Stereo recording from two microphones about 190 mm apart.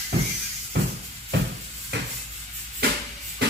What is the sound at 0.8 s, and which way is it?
Music, 65° right (ahead or behind).